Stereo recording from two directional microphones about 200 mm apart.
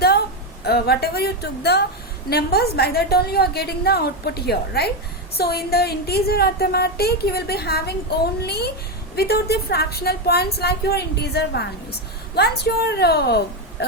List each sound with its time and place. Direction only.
0.6 s a woman's voice: 55° left (ahead or behind)